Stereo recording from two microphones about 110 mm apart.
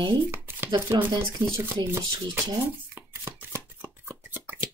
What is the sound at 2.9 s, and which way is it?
Chopping, 20° right (ahead or behind).